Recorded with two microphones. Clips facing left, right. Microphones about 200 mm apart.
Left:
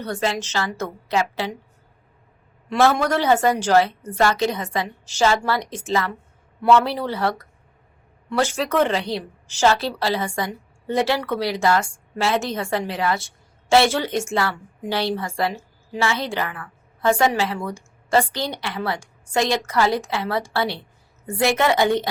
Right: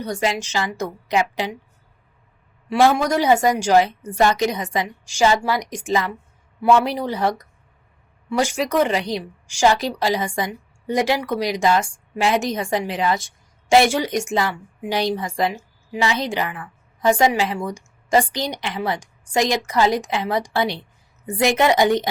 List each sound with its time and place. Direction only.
0.0 s a woman's voice: 15° right (ahead or behind)
2.6 s a woman's voice: 15° right (ahead or behind)